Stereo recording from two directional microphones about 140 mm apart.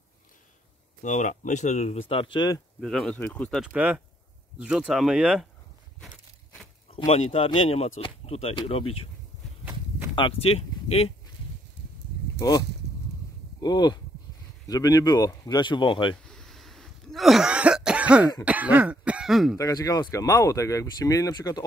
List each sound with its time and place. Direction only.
1.0 s speech: 60° left (ahead or behind); by 2.6 s 30° left (ahead or behind)
2.8 s speech: 5° left (ahead or behind)
3.6 s speech: 10° right (ahead or behind)
7.1 s speech: 45° left (ahead or behind)
10.1 s speech: 40° left (ahead or behind)
12.4 s speech: 25° left (ahead or behind)
16.3 s cough: 5° left (ahead or behind)
19.5 s speech: 25° left (ahead or behind)